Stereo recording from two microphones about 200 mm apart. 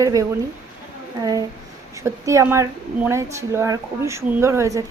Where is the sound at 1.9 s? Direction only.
15° right (ahead or behind).